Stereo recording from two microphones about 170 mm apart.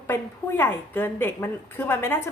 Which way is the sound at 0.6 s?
10° left (ahead or behind).